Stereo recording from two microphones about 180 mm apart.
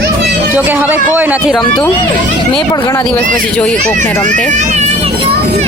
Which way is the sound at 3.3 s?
5° left (ahead or behind).